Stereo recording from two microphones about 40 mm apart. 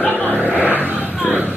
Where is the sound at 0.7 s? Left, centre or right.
Right.